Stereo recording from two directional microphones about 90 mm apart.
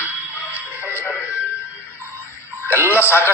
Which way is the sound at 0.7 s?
30° left (ahead or behind).